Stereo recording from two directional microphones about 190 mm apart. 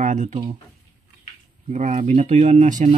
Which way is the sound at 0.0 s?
40° right (ahead or behind).